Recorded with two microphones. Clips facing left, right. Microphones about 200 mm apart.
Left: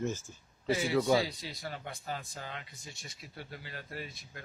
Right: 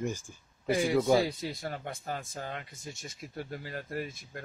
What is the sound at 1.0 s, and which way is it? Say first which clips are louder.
Speech: right 3 dB; 50° right (ahead or behind).